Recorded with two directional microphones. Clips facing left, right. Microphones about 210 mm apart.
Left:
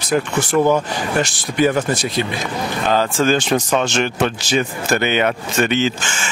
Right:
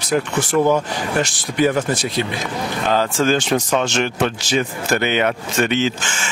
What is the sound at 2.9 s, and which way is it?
A man's voice, 15° left (ahead or behind).